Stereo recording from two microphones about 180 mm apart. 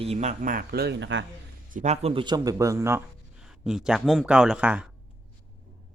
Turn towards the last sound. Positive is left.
turn(degrees=-5)  # may be behind; listen again after turning